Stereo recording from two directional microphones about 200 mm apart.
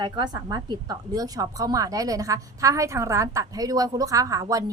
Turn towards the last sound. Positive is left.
turn(degrees=-15)  # may be behind; listen again after turning